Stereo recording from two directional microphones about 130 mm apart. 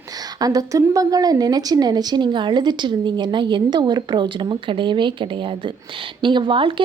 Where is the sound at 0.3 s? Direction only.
30° right (ahead or behind).